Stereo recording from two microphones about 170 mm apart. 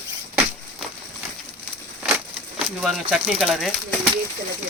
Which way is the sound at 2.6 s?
Centre (ahead or behind).